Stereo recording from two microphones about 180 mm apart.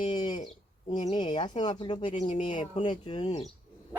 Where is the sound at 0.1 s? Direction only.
25° left (ahead or behind).